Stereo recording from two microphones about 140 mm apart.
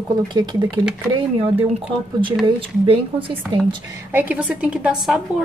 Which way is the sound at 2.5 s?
40° right (ahead or behind).